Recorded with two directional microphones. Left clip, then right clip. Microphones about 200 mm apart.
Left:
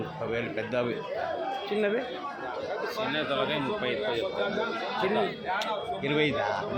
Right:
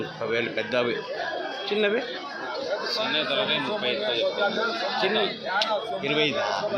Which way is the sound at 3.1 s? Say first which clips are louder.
Right 4 dB; 40° left (ahead or behind).